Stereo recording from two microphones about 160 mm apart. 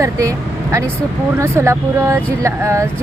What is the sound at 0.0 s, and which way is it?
Speech, 20° right (ahead or behind).